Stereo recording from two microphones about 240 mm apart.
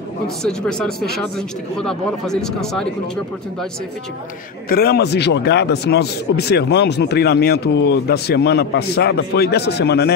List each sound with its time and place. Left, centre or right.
0.4 s speech: centre
4.6 s speech: left